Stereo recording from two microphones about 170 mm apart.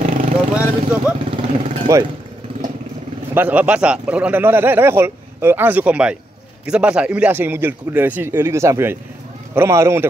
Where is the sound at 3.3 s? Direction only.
10° right (ahead or behind).